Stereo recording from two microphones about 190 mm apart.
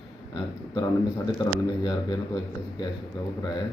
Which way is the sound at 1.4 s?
20° left (ahead or behind).